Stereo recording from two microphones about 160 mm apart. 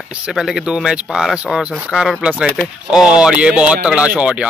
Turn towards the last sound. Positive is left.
turn(degrees=-5)  # may be behind; listen again after turning